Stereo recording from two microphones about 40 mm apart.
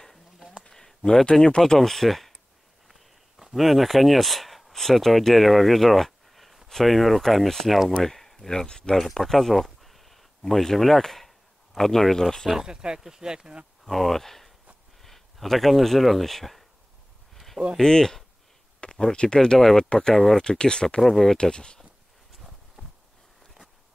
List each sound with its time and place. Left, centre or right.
0.7 s a sound: centre
1.3 s speech: centre
1.6 s speech: centre
2.9 s speech: centre
12.5 s speech: centre
13.8 s speech: centre
17.7 s speech: centre
18.8 s a sound: left
19.1 s speech: left
20.2 s speech: centre
20.4 s speech: left
21.0 s speech: centre
21.4 s speech: left